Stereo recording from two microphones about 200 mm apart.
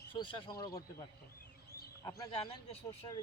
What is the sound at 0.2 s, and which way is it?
Speech, 25° left (ahead or behind).